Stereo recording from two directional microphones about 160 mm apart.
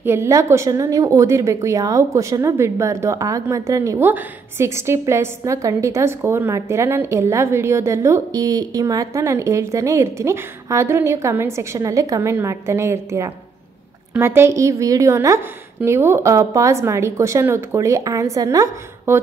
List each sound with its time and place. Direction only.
0.0 s a woman's voice: 15° right (ahead or behind)